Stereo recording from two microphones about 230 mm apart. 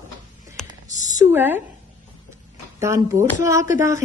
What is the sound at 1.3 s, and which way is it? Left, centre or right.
Speech, centre.